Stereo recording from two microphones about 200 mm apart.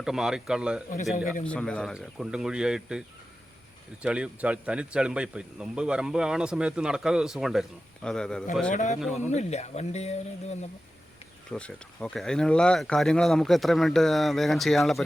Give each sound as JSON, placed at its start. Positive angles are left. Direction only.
{"t": 0.0, "sound": "speech", "side_deg": 0}
{"t": 4.0, "sound": "speech", "side_deg": -5}
{"t": 8.7, "sound": "speech", "side_deg": 35}
{"t": 9.0, "sound": "speech", "side_deg": 0}
{"t": 9.3, "sound": "speech", "side_deg": 35}
{"t": 11.5, "sound": "speech", "side_deg": 5}